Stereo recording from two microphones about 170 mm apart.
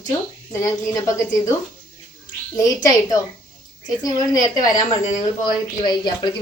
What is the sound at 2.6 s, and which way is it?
Speech, 20° left (ahead or behind).